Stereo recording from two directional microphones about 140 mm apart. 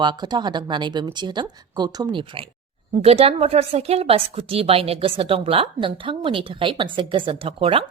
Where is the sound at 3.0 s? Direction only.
45° right (ahead or behind).